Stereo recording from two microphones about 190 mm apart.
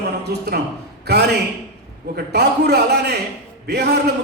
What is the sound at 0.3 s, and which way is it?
A man's voice, 55° right (ahead or behind).